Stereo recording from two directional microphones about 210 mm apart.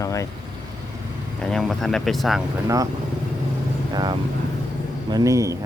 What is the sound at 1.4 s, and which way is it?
Speech, centre (ahead or behind).